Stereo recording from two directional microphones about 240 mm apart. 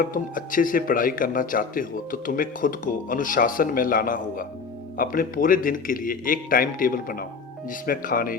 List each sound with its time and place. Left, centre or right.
0.0 s speech: left